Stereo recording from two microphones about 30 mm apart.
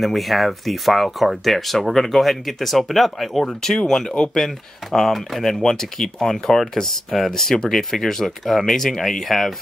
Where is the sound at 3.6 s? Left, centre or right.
Centre.